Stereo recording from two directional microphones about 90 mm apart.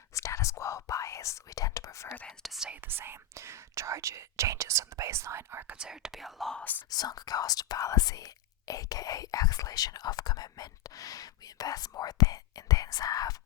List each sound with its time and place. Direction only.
0.1 s whispering: 35° left (ahead or behind)
2.4 s speech: centre (ahead or behind)
2.8 s speech: 25° right (ahead or behind)
5.6 s speech: 10° right (ahead or behind); by 6.7 s 5° left (ahead or behind)
6.9 s speech: 45° left (ahead or behind)